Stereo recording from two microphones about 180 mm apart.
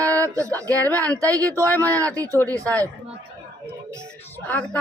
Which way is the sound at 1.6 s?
10° left (ahead or behind).